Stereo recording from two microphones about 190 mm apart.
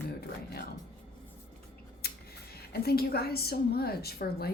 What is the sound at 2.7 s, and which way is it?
A woman's voice, 55° left (ahead or behind).